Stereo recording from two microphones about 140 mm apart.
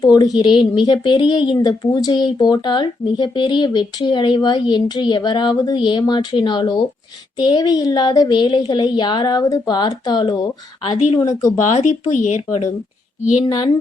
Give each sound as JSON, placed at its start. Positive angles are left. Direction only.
{"t": 0.0, "sound": "speech", "side_deg": 30}
{"t": 11.5, "sound": "speech", "side_deg": 60}